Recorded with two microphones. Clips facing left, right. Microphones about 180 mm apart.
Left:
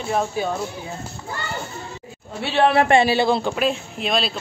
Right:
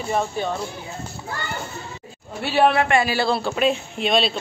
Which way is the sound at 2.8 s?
30° left (ahead or behind).